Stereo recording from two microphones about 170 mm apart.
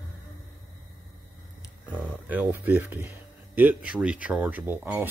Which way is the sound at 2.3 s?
10° right (ahead or behind).